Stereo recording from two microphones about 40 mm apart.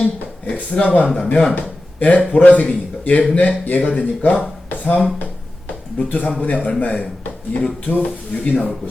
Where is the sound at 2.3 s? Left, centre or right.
Left.